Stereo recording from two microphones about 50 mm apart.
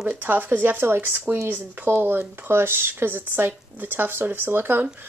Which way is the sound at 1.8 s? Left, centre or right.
Right.